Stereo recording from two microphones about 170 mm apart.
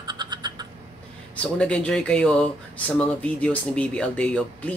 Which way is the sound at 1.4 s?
5° left (ahead or behind).